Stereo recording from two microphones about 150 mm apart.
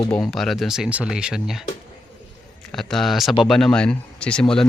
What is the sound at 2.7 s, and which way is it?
Speech, 5° left (ahead or behind).